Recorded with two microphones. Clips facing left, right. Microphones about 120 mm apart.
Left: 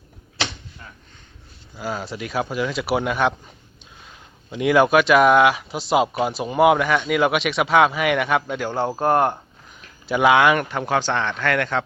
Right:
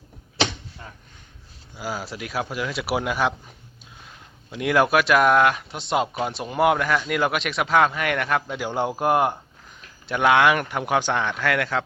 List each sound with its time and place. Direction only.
1.7 s speech: 5° right (ahead or behind)
8.6 s speech: 15° right (ahead or behind)
10.1 s speech: 5° left (ahead or behind)